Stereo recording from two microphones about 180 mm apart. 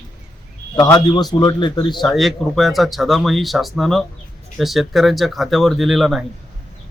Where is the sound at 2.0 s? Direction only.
Centre (ahead or behind).